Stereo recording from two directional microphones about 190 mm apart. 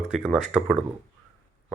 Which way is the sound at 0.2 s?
Centre (ahead or behind).